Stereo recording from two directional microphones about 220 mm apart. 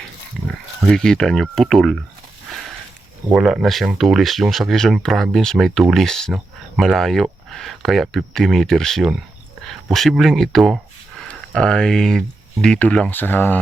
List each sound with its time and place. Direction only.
0.4 s speech: 5° left (ahead or behind)
2.5 s a sound: centre (ahead or behind)
3.3 s speech: centre (ahead or behind)